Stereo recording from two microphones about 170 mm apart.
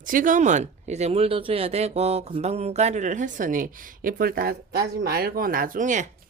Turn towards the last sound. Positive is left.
turn(degrees=-45)  # may be behind; listen again after turning